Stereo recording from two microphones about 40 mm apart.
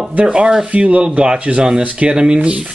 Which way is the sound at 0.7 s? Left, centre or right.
Right.